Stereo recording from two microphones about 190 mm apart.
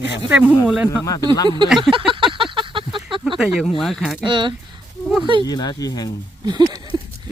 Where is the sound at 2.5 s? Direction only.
25° right (ahead or behind).